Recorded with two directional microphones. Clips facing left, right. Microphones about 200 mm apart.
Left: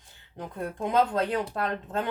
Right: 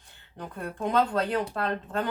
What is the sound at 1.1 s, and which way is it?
Speech, 15° left (ahead or behind).